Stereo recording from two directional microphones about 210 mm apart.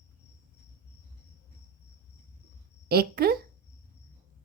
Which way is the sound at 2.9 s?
45° right (ahead or behind).